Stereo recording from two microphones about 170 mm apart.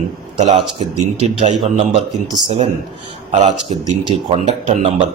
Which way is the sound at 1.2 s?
40° right (ahead or behind).